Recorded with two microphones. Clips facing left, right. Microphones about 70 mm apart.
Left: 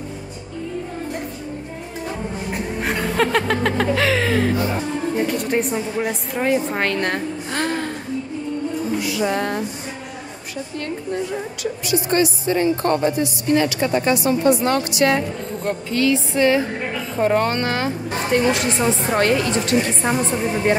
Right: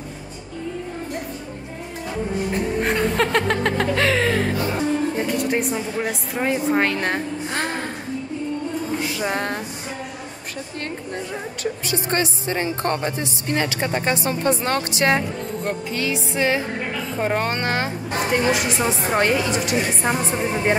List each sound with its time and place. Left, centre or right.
2.8 s snicker: centre
5.1 s a woman's voice: centre
7.5 s music: centre
9.0 s music: right
11.6 s a woman's voice: right
15.9 s a woman's voice: centre
17.6 s speech: right
18.3 s a woman's voice: centre